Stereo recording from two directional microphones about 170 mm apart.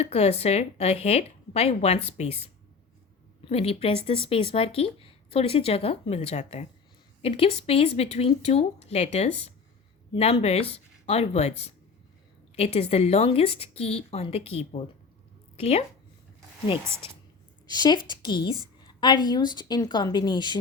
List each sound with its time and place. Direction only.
0.0 s speech: 35° left (ahead or behind)
17.7 s a woman's voice: 25° left (ahead or behind)